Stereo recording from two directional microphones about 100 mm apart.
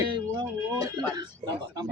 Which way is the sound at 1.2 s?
45° right (ahead or behind).